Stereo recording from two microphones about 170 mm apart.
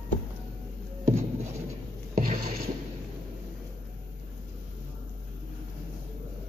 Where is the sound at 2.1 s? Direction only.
45° right (ahead or behind).